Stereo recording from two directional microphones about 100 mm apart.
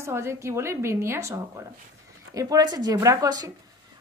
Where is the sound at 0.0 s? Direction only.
25° right (ahead or behind).